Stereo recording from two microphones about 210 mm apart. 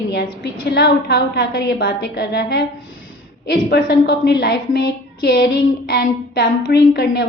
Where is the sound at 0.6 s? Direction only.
50° left (ahead or behind).